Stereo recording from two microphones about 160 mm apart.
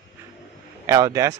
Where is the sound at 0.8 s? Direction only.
20° right (ahead or behind).